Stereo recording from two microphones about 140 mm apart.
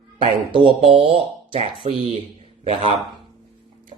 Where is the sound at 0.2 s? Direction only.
40° right (ahead or behind).